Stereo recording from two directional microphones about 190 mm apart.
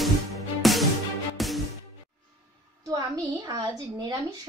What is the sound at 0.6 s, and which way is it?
Music, centre (ahead or behind).